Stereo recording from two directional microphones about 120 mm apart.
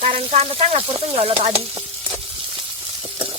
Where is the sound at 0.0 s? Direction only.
55° right (ahead or behind).